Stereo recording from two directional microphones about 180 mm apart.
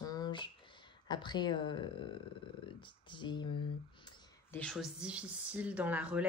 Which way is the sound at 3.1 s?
25° left (ahead or behind).